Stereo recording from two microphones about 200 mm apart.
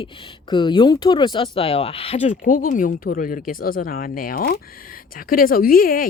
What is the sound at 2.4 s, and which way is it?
Speech, 45° left (ahead or behind).